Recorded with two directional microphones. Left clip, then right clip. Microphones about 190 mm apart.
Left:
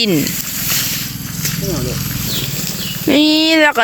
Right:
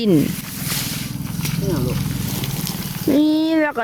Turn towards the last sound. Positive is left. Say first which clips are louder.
# left 7 dB
turn(degrees=0)  # may be behind; listen again after turning